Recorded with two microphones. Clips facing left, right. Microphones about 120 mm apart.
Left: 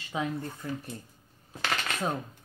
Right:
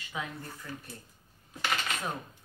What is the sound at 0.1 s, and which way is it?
Speech, 30° left (ahead or behind).